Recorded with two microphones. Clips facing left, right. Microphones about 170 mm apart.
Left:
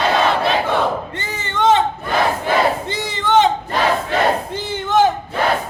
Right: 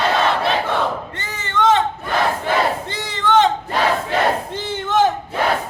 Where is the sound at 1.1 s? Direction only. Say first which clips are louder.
Even; 25° left (ahead or behind).